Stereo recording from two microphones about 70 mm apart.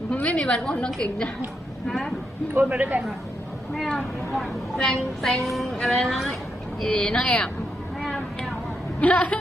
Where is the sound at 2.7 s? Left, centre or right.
Centre.